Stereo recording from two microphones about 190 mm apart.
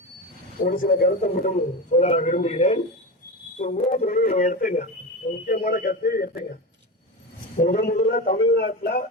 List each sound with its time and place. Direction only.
0.6 s a man's voice: 45° left (ahead or behind)
5.5 s a man's voice: 55° left (ahead or behind)